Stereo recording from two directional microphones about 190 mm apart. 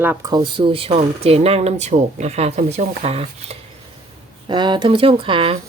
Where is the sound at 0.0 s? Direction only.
15° right (ahead or behind).